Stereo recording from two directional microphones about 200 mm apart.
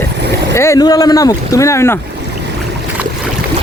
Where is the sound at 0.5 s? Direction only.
15° left (ahead or behind).